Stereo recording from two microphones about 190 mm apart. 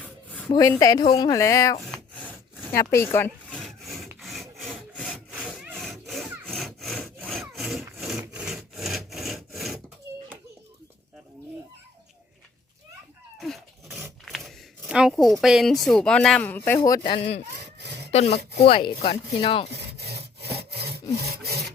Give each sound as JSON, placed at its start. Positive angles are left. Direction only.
{"t": 0.0, "sound": "a sound", "side_deg": 10}
{"t": 0.4, "sound": "a woman's voice", "side_deg": 20}
{"t": 1.8, "sound": "wood", "side_deg": 0}
{"t": 2.7, "sound": "wood", "side_deg": 15}
{"t": 7.2, "sound": "sawing", "side_deg": 0}
{"t": 8.0, "sound": "wood", "side_deg": -5}
{"t": 13.4, "sound": "dog", "side_deg": 0}
{"t": 14.0, "sound": "speech", "side_deg": 0}
{"t": 18.1, "sound": "speech", "side_deg": 35}
{"t": 19.7, "sound": "sawing", "side_deg": -60}